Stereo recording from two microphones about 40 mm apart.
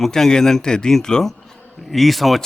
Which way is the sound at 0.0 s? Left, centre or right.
Centre.